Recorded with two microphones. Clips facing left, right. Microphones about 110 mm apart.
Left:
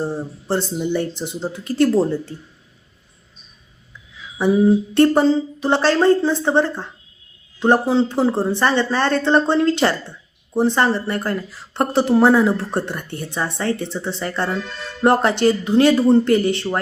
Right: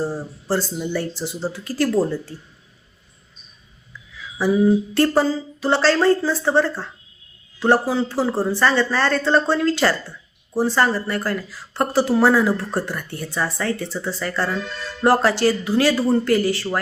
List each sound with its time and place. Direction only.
0.0 s speech: 25° left (ahead or behind)
4.4 s speech: 25° left (ahead or behind)